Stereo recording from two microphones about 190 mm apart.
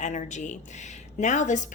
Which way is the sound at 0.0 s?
40° left (ahead or behind).